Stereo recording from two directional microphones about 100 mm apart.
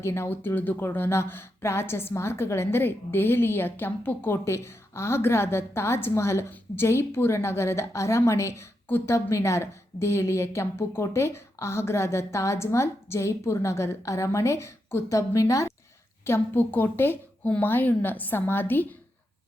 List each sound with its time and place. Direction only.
0.0 s a woman's voice: 25° left (ahead or behind)
16.2 s a woman's voice: 20° left (ahead or behind)